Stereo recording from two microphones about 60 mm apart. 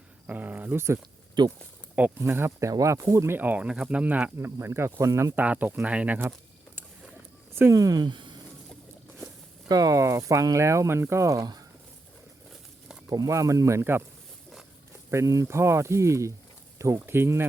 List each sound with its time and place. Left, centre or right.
0.3 s a sound: right
2.1 s speech: right
2.6 s speech: right
3.3 s speech: right
3.6 s speech: centre
4.6 s speech: right
5.4 s speech: right
7.7 s speech: right
9.6 s speech: right
13.1 s speech: right
15.1 s speech: right
15.4 s speech: right
16.7 s a sound: right
17.1 s speech: right